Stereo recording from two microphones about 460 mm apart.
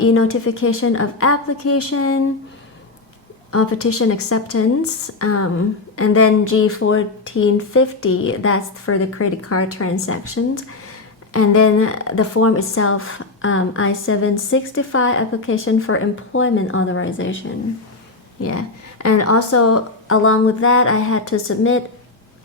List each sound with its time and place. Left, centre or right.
0.1 s speech: left
3.5 s a woman's voice: left
18.3 s speech: left